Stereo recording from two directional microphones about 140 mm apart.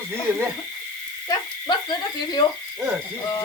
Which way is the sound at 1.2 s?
30° left (ahead or behind).